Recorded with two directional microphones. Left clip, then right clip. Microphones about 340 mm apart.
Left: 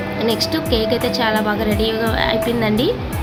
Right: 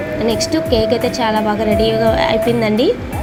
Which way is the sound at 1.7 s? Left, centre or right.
Centre.